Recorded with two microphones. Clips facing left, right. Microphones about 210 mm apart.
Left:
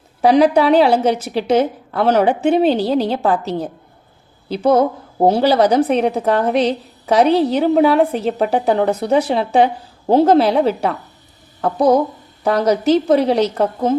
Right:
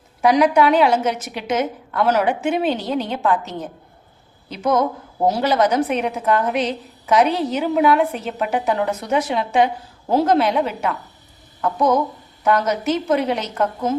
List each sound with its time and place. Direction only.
0.2 s a woman's voice: 30° left (ahead or behind)